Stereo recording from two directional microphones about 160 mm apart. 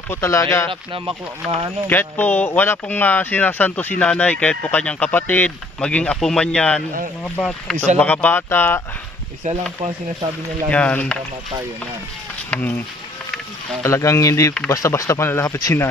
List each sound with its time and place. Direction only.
0.1 s speech: 15° left (ahead or behind)
0.9 s speech: 35° right (ahead or behind)
1.9 s speech: 10° left (ahead or behind)
7.7 s speech: 45° right (ahead or behind)
8.0 s speech: 10° left (ahead or behind)
9.5 s speech: 35° right (ahead or behind)
10.7 s speech: 10° left (ahead or behind)
12.4 s speech: 10° left (ahead or behind)
13.8 s speech: 15° left (ahead or behind)